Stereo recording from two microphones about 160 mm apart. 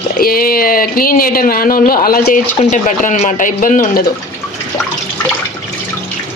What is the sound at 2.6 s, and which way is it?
Speech, 50° left (ahead or behind).